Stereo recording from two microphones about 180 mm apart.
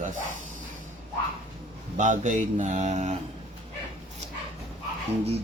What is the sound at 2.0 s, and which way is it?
Speech, 45° right (ahead or behind).